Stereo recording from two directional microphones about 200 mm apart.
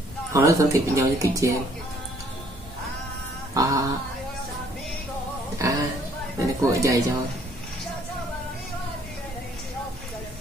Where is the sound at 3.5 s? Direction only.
15° right (ahead or behind).